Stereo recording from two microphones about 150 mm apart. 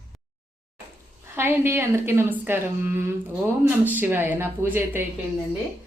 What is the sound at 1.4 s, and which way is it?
A woman's voice, 15° right (ahead or behind).